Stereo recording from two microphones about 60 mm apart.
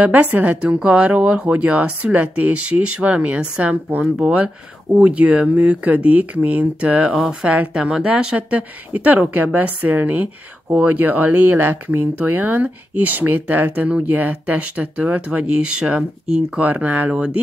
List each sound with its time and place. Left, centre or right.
0.0 s speech: right; by 16.5 s centre
16.5 s speech: right